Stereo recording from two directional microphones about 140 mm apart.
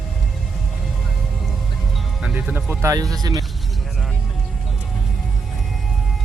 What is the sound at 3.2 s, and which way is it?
Speech, 25° right (ahead or behind).